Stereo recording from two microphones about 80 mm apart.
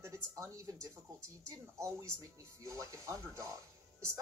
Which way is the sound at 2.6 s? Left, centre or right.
Right.